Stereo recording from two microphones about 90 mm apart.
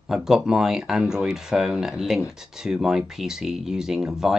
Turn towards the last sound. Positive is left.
turn(degrees=-5)  # may be behind; listen again after turning